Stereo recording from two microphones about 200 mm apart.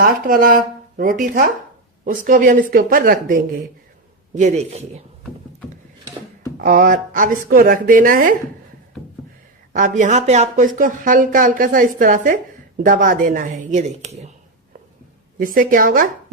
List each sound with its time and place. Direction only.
0.0 s a woman's voice: 45° right (ahead or behind)
6.6 s a woman's voice: 40° right (ahead or behind)
9.7 s speech: 40° right (ahead or behind)
15.4 s a woman's voice: 45° right (ahead or behind)